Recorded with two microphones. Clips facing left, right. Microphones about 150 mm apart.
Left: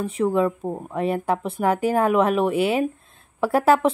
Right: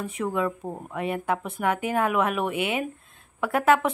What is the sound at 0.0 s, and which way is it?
A woman's voice, 30° left (ahead or behind).